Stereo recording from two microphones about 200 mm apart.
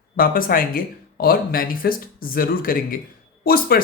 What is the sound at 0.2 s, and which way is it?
Speech, 45° left (ahead or behind).